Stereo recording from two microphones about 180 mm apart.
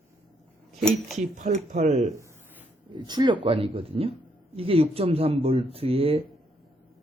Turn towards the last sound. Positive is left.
turn(degrees=-30)  # may be behind; listen again after turning